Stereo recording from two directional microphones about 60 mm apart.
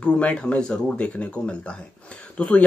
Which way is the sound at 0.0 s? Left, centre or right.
Centre.